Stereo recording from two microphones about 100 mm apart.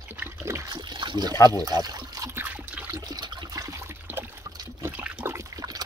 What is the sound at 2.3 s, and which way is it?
Speech, 20° right (ahead or behind).